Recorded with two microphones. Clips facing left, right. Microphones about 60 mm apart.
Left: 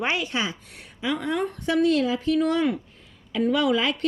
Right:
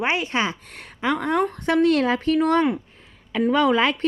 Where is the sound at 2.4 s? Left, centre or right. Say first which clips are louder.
Right 3 dB; right.